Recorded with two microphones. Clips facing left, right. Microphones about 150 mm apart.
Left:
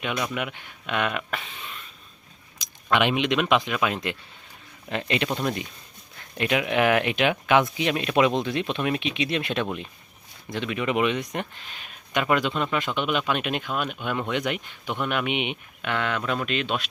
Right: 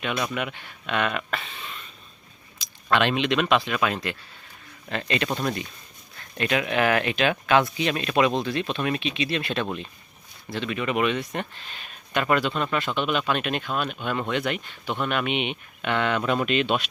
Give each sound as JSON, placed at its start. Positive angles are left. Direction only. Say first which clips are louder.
{"t": 0.3, "sound": "speech", "louder": "right 1 dB", "side_deg": 10}
{"t": 15.9, "sound": "speech", "louder": "right 3 dB", "side_deg": 0}